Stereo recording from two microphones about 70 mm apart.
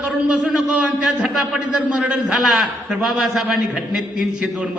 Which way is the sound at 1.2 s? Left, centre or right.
Centre.